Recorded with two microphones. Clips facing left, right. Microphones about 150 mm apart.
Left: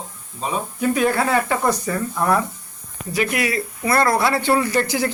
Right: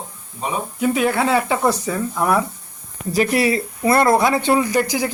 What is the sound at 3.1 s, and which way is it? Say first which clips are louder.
Speech: right 4 dB; 35° right (ahead or behind).